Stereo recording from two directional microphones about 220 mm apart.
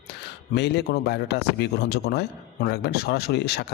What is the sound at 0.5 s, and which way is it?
A man's voice, 50° left (ahead or behind).